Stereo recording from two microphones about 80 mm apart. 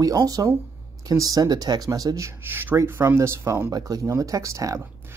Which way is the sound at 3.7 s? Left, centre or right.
Right.